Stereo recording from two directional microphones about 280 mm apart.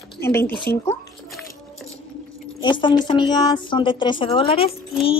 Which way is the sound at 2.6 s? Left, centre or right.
Centre.